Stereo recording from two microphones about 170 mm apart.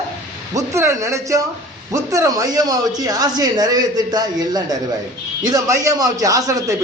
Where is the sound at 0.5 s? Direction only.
15° right (ahead or behind).